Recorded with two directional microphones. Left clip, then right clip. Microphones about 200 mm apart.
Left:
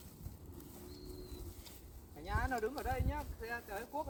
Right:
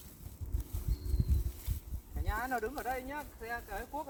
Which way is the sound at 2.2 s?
20° right (ahead or behind).